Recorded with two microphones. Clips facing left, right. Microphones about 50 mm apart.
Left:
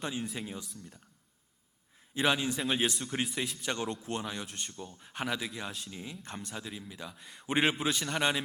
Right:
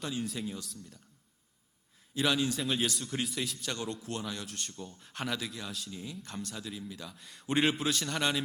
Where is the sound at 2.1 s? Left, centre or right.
Left.